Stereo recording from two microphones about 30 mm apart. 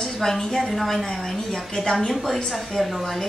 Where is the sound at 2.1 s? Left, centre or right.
Centre.